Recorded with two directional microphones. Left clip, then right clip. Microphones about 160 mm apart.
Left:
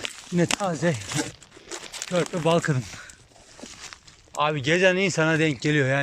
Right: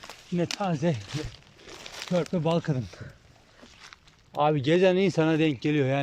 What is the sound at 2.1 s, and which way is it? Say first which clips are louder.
Speech: left 4 dB; 20° right (ahead or behind).